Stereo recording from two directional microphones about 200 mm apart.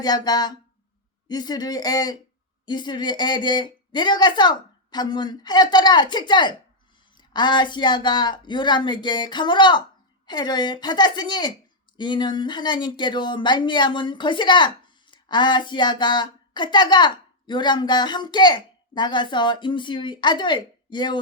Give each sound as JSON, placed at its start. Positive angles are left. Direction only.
{"t": 0.0, "sound": "speech", "side_deg": 20}